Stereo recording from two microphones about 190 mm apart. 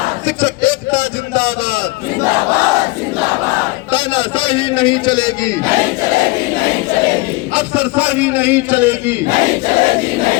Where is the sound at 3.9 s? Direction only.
30° left (ahead or behind).